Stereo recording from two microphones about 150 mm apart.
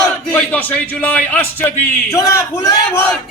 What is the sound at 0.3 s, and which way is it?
A man's voice, 10° left (ahead or behind).